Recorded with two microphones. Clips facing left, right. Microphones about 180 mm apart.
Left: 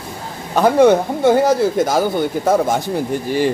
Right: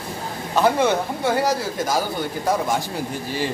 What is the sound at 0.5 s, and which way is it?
Speech, 50° left (ahead or behind).